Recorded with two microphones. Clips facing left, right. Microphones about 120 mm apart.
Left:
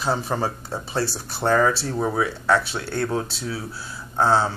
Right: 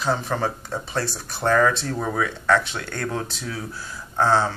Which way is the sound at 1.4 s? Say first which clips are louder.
Even; 15° left (ahead or behind).